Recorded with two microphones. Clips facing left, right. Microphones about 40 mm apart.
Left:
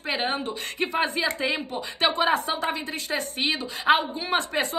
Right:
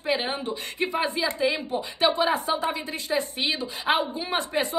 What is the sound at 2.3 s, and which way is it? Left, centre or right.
A woman's voice, left.